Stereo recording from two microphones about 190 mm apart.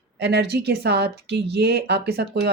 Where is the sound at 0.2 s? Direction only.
60° right (ahead or behind).